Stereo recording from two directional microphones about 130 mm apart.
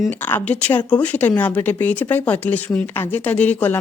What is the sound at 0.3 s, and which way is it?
Speech, 15° left (ahead or behind).